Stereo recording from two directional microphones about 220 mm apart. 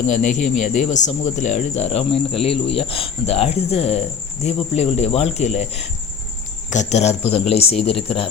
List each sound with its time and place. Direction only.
0.1 s speech: 35° left (ahead or behind)